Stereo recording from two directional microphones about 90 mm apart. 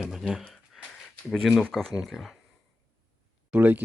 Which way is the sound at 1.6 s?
5° left (ahead or behind).